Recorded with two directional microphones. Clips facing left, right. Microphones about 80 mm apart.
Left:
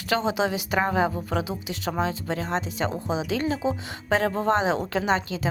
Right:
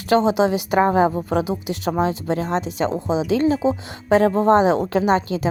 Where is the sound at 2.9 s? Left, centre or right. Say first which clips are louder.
Right 7 dB; right.